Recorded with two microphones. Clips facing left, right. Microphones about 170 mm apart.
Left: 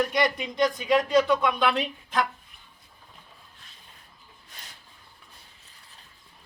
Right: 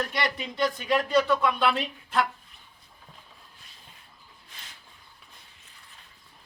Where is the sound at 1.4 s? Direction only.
Centre (ahead or behind).